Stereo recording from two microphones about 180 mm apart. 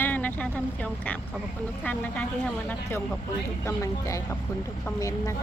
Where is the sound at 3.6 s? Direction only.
15° left (ahead or behind).